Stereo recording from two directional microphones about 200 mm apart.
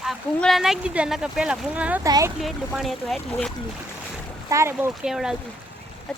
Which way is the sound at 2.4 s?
Centre (ahead or behind).